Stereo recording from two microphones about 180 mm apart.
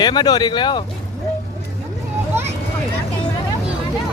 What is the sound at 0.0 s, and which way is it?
Speech, 25° left (ahead or behind).